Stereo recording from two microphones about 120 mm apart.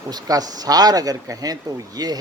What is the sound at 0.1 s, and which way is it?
Speech, 30° right (ahead or behind).